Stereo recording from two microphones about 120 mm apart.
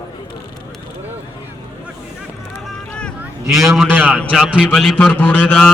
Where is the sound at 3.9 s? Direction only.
15° right (ahead or behind).